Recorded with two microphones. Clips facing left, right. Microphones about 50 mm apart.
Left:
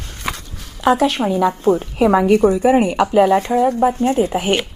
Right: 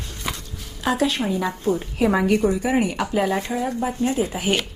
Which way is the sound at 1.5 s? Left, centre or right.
Left.